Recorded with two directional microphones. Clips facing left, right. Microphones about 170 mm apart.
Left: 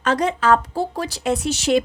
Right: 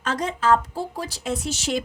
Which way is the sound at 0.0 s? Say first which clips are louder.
Left 5 dB; 70° left (ahead or behind).